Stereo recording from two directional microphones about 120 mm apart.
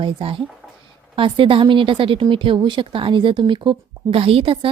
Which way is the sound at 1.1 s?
45° right (ahead or behind).